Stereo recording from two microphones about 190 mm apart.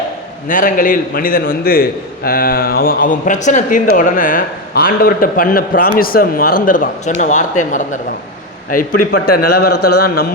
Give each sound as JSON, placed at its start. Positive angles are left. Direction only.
{"t": 0.4, "sound": "a man's voice", "side_deg": 45}